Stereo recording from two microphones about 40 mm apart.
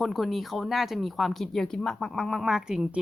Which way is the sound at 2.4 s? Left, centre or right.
Centre.